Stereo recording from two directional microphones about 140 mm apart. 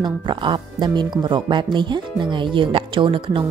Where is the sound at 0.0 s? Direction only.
35° right (ahead or behind).